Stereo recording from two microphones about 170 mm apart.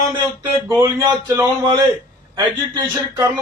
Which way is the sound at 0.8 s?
15° right (ahead or behind).